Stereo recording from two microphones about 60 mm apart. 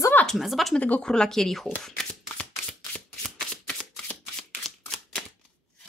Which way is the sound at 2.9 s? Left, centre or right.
Centre.